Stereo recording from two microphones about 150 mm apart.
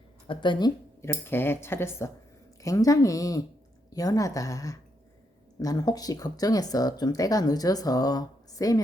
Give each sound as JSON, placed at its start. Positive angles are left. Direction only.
{"t": 0.3, "sound": "speech", "side_deg": 30}
{"t": 1.0, "sound": "speech", "side_deg": 15}